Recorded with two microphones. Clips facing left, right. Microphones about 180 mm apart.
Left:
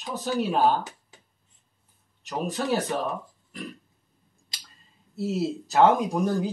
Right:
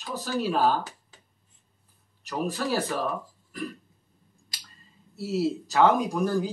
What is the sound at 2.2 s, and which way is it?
Speech, 20° left (ahead or behind).